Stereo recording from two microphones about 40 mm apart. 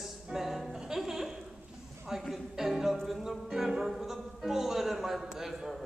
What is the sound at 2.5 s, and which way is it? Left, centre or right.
Speech, centre.